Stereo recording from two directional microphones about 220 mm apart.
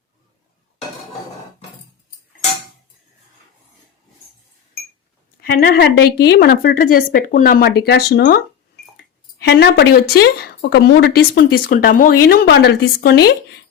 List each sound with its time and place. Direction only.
5.4 s speech: 40° left (ahead or behind)
9.4 s speech: 50° left (ahead or behind)